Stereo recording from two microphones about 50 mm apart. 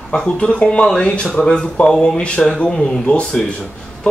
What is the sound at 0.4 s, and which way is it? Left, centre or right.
Speech, left.